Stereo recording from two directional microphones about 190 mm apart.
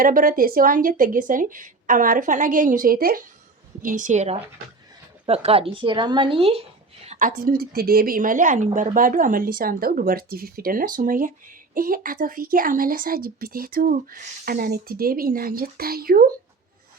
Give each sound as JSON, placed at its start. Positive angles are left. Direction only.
{"t": 0.0, "sound": "a woman's voice", "side_deg": -45}
{"t": 7.0, "sound": "a woman's voice", "side_deg": -40}